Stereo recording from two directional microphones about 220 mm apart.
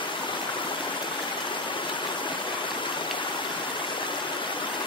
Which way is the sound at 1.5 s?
20° left (ahead or behind).